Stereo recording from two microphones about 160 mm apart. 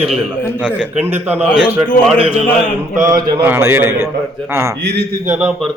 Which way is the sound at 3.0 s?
20° right (ahead or behind).